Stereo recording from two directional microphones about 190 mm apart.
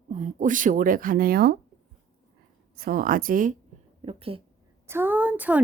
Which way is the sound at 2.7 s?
50° right (ahead or behind).